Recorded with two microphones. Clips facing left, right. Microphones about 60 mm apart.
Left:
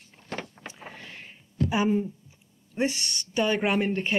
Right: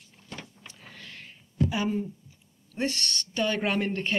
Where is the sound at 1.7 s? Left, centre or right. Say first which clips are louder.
Left 4 dB; centre.